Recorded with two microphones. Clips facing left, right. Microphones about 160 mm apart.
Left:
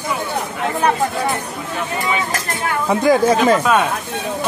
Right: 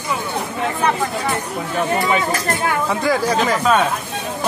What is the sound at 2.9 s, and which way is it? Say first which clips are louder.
Speech: left 8 dB; 20° left (ahead or behind).